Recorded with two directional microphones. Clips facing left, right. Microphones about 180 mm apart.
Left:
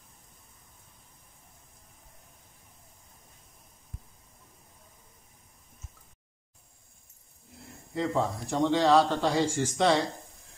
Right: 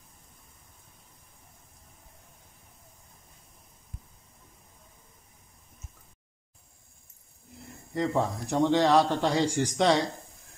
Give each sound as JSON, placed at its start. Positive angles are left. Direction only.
{"t": 8.0, "sound": "a man's voice", "side_deg": -15}